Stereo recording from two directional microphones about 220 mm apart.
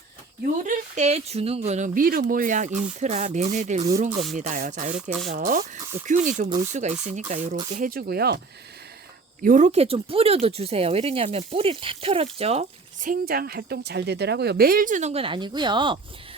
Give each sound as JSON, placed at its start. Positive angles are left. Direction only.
{"t": 0.6, "sound": "speech", "side_deg": -35}
{"t": 2.6, "sound": "speech", "side_deg": -5}
{"t": 3.0, "sound": "speech", "side_deg": -30}
{"t": 9.4, "sound": "speech", "side_deg": -35}